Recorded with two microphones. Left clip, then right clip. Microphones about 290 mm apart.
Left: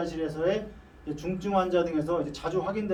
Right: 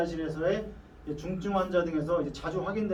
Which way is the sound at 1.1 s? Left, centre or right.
Left.